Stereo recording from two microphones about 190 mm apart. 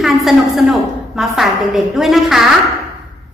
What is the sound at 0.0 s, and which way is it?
A woman's voice, centre (ahead or behind).